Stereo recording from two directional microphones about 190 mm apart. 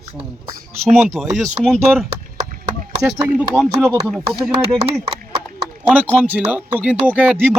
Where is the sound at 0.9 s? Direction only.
Centre (ahead or behind).